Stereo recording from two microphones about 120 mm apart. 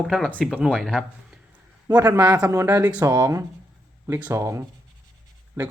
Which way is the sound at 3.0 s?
30° right (ahead or behind).